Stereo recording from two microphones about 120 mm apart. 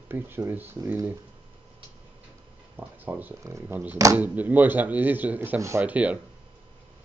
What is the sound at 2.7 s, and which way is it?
Speech, 15° right (ahead or behind).